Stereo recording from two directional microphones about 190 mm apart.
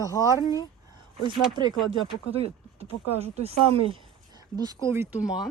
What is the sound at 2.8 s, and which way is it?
Speech, 35° right (ahead or behind).